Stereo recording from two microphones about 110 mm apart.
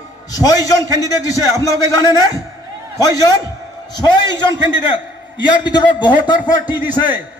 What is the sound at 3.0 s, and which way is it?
Speech, 35° left (ahead or behind).